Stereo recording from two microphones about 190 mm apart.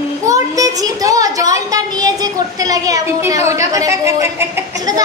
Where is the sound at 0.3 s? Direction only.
20° right (ahead or behind).